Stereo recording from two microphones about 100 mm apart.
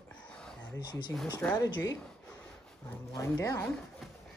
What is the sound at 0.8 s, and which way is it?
Speech, 45° left (ahead or behind).